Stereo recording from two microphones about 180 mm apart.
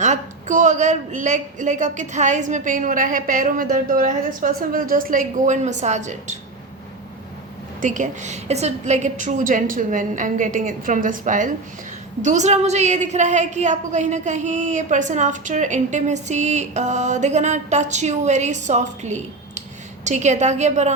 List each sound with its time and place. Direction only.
0.0 s a woman's voice: 45° right (ahead or behind)
7.8 s a woman's voice: 45° right (ahead or behind)